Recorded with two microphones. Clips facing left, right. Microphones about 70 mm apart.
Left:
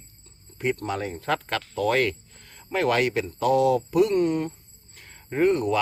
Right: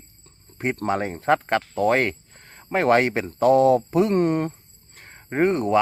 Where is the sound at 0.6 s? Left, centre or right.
Right.